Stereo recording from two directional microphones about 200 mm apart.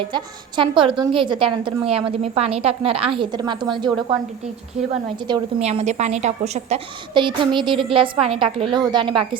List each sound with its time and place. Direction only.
0.0 s a woman's voice: 25° right (ahead or behind)
5.3 s a woman's voice: 30° right (ahead or behind)